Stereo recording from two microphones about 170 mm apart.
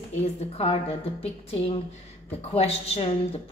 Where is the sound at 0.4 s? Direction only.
35° left (ahead or behind).